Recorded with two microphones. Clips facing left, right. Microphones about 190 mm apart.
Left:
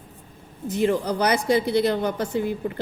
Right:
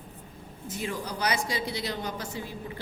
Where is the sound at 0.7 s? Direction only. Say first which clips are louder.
Left 12 dB; 60° left (ahead or behind).